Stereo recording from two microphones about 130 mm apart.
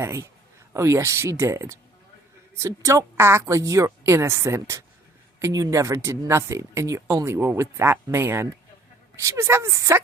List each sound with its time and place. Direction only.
0.0 s speech: 20° right (ahead or behind)